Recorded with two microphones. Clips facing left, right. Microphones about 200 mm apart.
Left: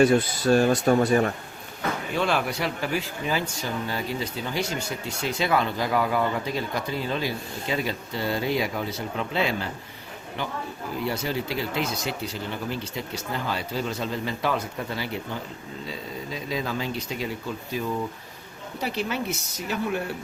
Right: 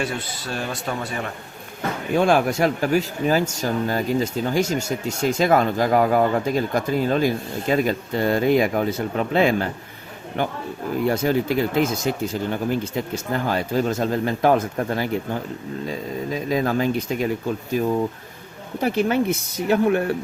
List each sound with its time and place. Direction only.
0.0 s speech: 45° left (ahead or behind)
2.1 s speech: 50° right (ahead or behind)